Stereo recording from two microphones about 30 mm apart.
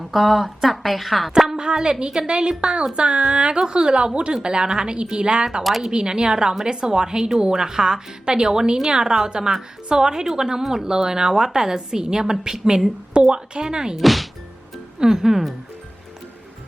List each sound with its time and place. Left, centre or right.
0.0 s a woman's voice: centre
1.5 s a woman's voice: right
13.9 s a woman's voice: centre
15.1 s speech: centre